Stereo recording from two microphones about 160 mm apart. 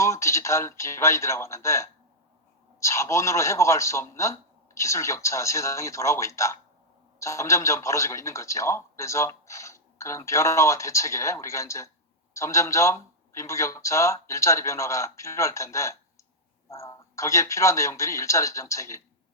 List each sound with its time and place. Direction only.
0.0 s a man's voice: 20° left (ahead or behind)